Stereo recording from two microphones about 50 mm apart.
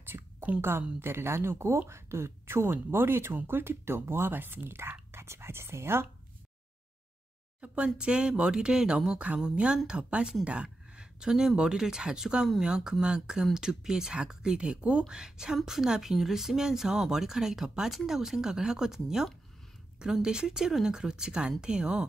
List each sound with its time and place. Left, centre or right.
0.6 s speech: right
7.6 s speech: right